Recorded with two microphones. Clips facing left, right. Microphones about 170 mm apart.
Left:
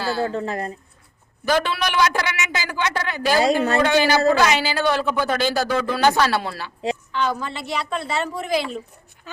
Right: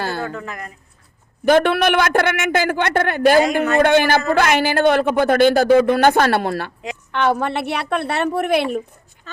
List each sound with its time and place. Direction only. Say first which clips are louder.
0.2 s speech: left 4 dB; 30° left (ahead or behind)
1.5 s speech: right 7 dB; 55° right (ahead or behind)
3.4 s speech: right 1 dB; 35° left (ahead or behind)
3.8 s speech: right 3 dB; 55° right (ahead or behind)
9.3 s speech: even; 10° left (ahead or behind)